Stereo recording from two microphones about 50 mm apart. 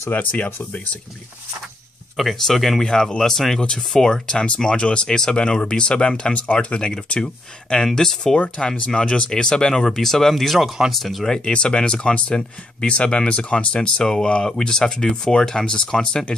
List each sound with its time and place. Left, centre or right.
0.1 s speech: left
2.1 s speech: centre
2.8 s speech: centre
11.2 s speech: centre